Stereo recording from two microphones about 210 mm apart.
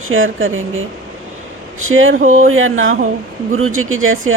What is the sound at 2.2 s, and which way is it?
Speech, 35° right (ahead or behind).